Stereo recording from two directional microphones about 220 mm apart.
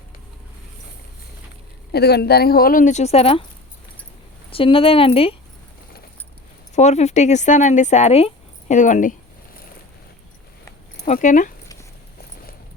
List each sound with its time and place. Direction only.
1.9 s speech: 45° left (ahead or behind); by 3.4 s 25° left (ahead or behind)
4.5 s speech: 25° left (ahead or behind)
6.7 s speech: 30° left (ahead or behind)
11.0 s speech: 35° left (ahead or behind)